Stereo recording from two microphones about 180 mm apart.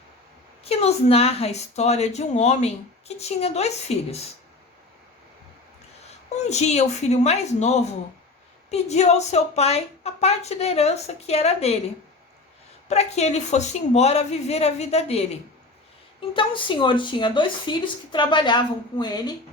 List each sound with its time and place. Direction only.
0.6 s speech: 35° left (ahead or behind)
6.3 s speech: 40° left (ahead or behind)
12.9 s speech: 35° left (ahead or behind)
16.3 s speech: 30° left (ahead or behind)